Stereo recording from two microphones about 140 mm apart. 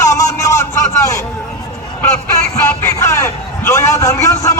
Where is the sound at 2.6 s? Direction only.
20° left (ahead or behind).